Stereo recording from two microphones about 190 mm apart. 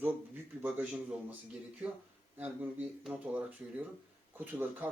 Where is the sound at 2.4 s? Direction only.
10° right (ahead or behind).